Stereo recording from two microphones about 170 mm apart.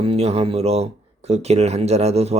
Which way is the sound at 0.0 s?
35° right (ahead or behind).